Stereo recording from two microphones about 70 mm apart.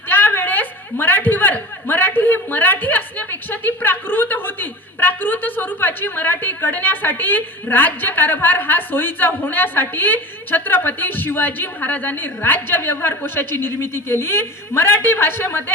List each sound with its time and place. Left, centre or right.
0.1 s a woman's voice: left